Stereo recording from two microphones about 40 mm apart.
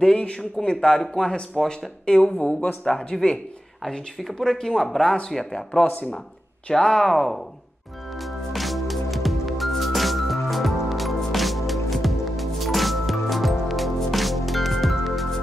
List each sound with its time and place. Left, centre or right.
0.2 s speech: left
0.8 s speech: centre
4.4 s speech: centre
5.9 s speech: left
6.8 s speech: left
7.1 s speech: centre
8.2 s music: centre